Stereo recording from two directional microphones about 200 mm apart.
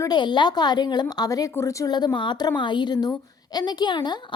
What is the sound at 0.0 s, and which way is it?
A woman's voice, 20° left (ahead or behind).